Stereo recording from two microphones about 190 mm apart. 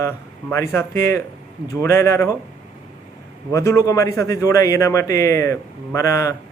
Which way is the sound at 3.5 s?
15° left (ahead or behind).